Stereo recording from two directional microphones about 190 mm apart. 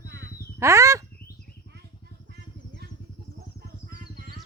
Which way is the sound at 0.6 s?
15° right (ahead or behind).